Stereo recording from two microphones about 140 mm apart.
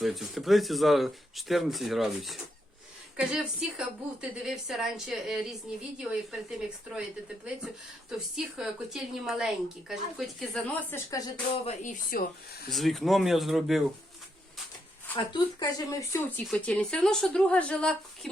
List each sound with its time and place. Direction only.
0.0 s a woman's voice: centre (ahead or behind)
8.5 s a woman's voice: 5° right (ahead or behind)
10.8 s speech: 15° left (ahead or behind)
11.5 s speech: 50° left (ahead or behind)
12.7 s a woman's voice: centre (ahead or behind)
15.1 s speech: 35° left (ahead or behind)
16.5 s speech: 10° left (ahead or behind)